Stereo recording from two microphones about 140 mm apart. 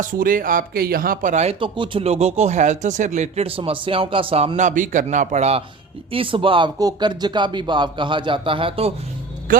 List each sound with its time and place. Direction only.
0.0 s speech: 80° right; by 1.5 s 55° right (ahead or behind)
1.5 s speech: 35° right (ahead or behind)
4.5 s speech: 65° right (ahead or behind); by 8.9 s 40° right (ahead or behind)
9.5 s a man's voice: 80° right